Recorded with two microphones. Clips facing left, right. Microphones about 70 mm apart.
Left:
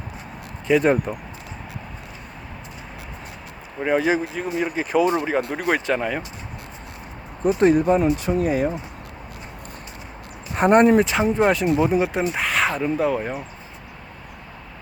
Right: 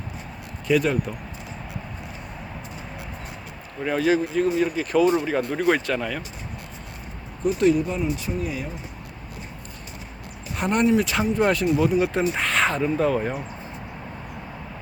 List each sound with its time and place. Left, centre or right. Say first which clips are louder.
0.7 s speech: left 3 dB; left
3.8 s speech: left 1 dB; centre
5.8 s speech: left 3 dB; centre
7.4 s speech: left 3 dB; left
10.5 s speech: left 6 dB; left
11.0 s speech: left 3 dB; left
12.2 s speech: even; centre